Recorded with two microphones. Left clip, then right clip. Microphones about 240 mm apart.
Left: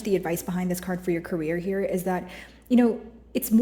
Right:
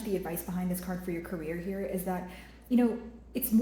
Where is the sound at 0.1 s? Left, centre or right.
Left.